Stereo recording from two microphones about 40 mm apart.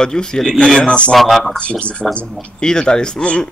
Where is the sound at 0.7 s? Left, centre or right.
Left.